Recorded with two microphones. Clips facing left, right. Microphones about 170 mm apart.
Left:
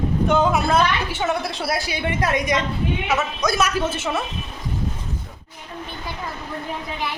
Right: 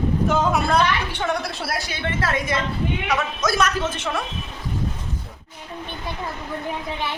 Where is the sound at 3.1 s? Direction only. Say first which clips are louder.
Left 1 dB; centre (ahead or behind).